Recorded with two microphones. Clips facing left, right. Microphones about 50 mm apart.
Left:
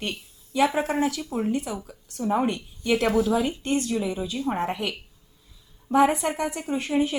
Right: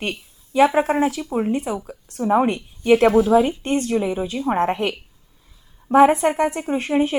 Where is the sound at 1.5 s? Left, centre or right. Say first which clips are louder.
Right 4 dB; right.